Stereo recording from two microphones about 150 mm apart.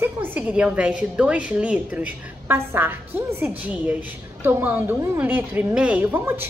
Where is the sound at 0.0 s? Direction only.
10° right (ahead or behind).